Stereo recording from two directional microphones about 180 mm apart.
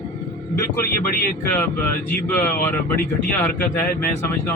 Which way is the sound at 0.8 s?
55° left (ahead or behind).